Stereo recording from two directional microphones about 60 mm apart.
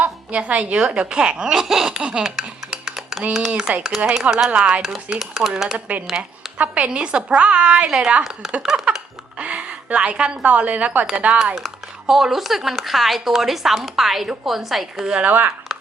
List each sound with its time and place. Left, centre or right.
0.0 s speech: right
2.8 s computer keyboard: centre
3.6 s speech: centre
4.4 s a woman's voice: right
4.8 s speech: centre
6.6 s a woman's voice: right
9.4 s a woman's voice: right
11.5 s speech: centre
15.0 s a woman's voice: centre
15.3 s a woman's voice: right